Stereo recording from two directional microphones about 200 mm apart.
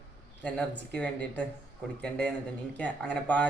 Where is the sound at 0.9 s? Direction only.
5° left (ahead or behind).